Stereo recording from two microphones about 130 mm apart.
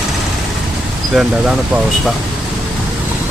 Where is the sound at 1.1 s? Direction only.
5° right (ahead or behind).